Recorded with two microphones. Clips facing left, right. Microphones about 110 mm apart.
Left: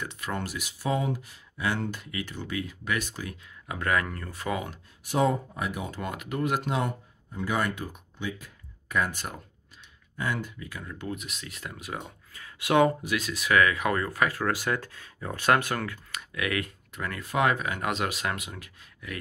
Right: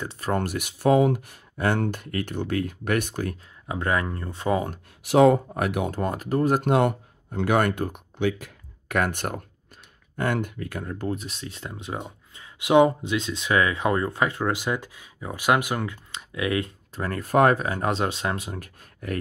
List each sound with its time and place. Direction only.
0.0 s speech: 35° right (ahead or behind)
0.4 s speech: 55° right (ahead or behind)
3.6 s speech: 25° right (ahead or behind)
5.0 s speech: 80° right
5.5 s speech: 65° right (ahead or behind)
5.9 s speech: 40° right (ahead or behind)
6.6 s speech: 65° right (ahead or behind)
10.9 s speech: 35° right (ahead or behind)
18.6 s speech: 45° right (ahead or behind)